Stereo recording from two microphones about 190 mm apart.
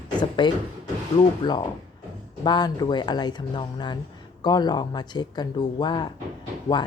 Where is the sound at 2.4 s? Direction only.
20° left (ahead or behind).